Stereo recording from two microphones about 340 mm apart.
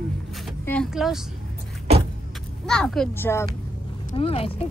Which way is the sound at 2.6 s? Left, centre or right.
Centre.